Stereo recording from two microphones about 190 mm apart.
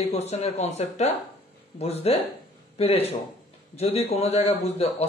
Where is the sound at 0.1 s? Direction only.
35° left (ahead or behind).